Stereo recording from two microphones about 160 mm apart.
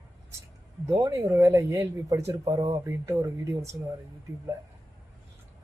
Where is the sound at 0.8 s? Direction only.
20° right (ahead or behind).